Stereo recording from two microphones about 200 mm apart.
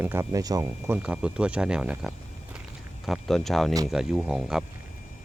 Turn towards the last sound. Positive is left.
turn(degrees=0)  # may be behind; listen again after turning